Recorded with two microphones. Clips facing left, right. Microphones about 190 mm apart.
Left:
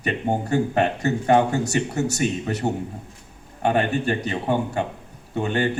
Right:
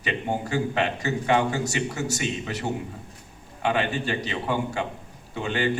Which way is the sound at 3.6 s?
55° left (ahead or behind).